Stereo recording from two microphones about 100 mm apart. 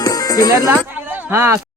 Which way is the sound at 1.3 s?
25° right (ahead or behind).